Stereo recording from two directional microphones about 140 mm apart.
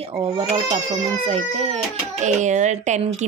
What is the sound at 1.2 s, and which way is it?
Speech, 50° right (ahead or behind).